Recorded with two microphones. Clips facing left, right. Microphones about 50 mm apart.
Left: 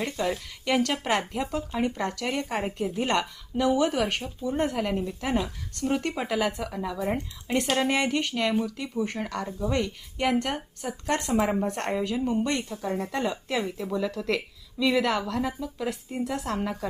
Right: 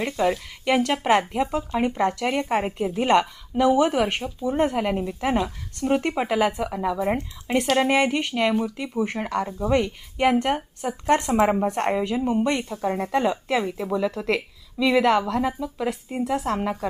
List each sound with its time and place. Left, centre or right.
0.0 s a woman's voice: centre